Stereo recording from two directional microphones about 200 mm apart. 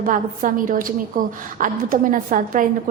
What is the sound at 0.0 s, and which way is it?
A woman's voice, 40° right (ahead or behind).